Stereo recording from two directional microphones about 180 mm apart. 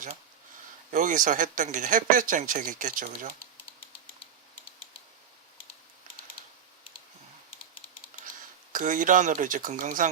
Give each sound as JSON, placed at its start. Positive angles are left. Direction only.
{"t": 0.9, "sound": "speech", "side_deg": -45}
{"t": 8.7, "sound": "speech", "side_deg": -45}